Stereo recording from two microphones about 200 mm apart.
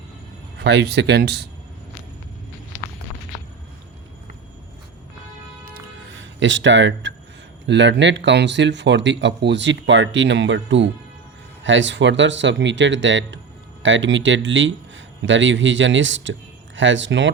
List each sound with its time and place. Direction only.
0.6 s speech: 55° right (ahead or behind)
6.1 s a man's voice: 70° right (ahead or behind)